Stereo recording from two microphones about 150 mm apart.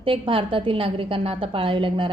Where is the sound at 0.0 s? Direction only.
35° right (ahead or behind).